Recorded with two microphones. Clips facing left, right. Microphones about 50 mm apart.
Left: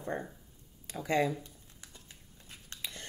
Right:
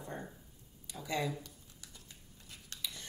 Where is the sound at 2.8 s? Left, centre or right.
Left.